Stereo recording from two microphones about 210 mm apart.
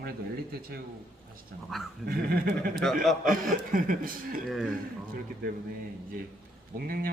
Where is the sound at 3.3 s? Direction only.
40° right (ahead or behind).